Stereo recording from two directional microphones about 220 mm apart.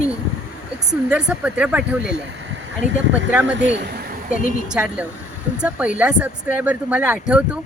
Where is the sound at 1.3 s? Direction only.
5° right (ahead or behind).